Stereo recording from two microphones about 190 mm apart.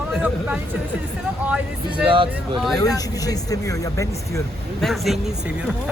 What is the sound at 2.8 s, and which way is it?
Speech, 20° left (ahead or behind).